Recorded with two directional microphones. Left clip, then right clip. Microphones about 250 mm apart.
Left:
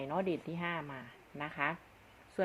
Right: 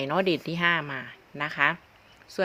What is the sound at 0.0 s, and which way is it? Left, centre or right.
A woman's voice, right.